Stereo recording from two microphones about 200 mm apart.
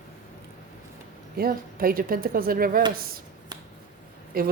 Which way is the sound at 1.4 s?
45° right (ahead or behind).